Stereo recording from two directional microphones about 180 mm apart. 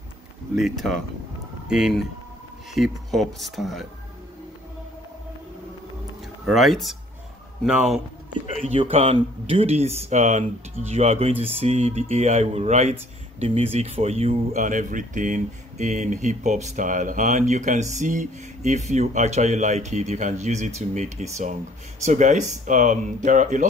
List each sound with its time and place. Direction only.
0.6 s speech: centre (ahead or behind)
6.4 s speech: centre (ahead or behind)
8.6 s speech: 35° right (ahead or behind)